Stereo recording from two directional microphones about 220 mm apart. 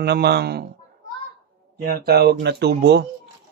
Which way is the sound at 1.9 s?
45° right (ahead or behind).